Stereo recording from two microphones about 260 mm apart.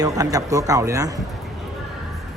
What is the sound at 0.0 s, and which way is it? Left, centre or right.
Speech, centre.